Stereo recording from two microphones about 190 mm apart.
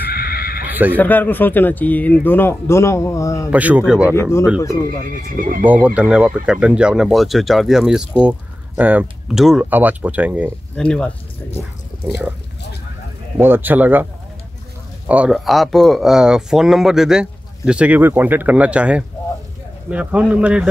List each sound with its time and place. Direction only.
0.0 s neigh: 55° left (ahead or behind)
0.7 s bleat: 10° right (ahead or behind)
0.9 s speech: 10° left (ahead or behind)
3.4 s speech: 5° right (ahead or behind)
4.1 s speech: 15° left (ahead or behind)
5.1 s speech: 45° right (ahead or behind)
5.6 s speech: 10° right (ahead or behind)
10.8 s speech: 5° left (ahead or behind)
13.4 s speech: 10° right (ahead or behind)
15.0 s speech: 5° right (ahead or behind)